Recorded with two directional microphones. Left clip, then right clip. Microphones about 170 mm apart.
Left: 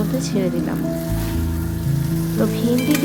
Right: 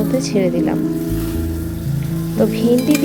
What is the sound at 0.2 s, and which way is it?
Speech, 20° right (ahead or behind).